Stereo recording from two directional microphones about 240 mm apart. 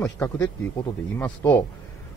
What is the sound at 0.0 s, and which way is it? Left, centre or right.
Speech, centre.